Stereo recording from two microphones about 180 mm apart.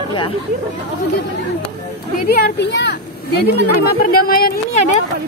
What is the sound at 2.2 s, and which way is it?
Speech, 60° left (ahead or behind).